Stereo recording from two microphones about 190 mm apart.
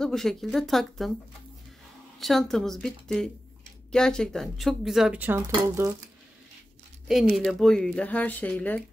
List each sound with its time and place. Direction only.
0.0 s speech: centre (ahead or behind)
2.1 s speech: centre (ahead or behind); by 5.9 s 15° right (ahead or behind)
7.1 s speech: centre (ahead or behind)